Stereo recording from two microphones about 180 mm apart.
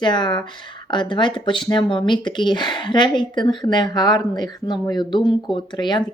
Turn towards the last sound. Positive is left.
turn(degrees=25)  # may be behind; listen again after turning